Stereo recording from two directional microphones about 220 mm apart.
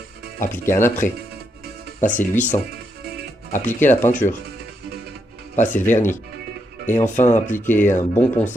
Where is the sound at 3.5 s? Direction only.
10° left (ahead or behind).